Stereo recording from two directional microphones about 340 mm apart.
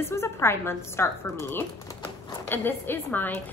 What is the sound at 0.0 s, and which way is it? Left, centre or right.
Speech, centre.